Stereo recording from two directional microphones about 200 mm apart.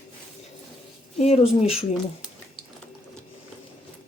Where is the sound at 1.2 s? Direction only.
30° left (ahead or behind).